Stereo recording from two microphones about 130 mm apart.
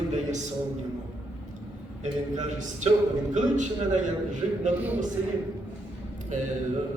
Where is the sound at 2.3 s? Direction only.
70° right (ahead or behind).